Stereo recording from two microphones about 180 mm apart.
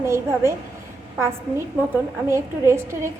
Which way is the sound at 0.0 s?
15° right (ahead or behind).